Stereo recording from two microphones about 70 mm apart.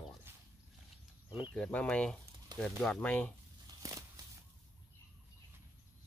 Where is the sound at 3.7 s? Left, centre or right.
Right.